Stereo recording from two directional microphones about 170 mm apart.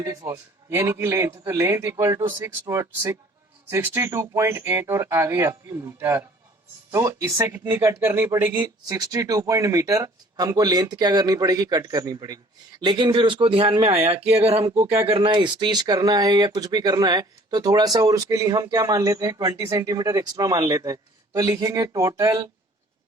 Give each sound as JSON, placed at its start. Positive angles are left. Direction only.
{"t": 0.3, "sound": "speech", "side_deg": -15}